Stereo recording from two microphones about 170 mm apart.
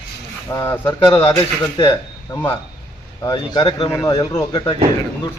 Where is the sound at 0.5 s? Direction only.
15° left (ahead or behind).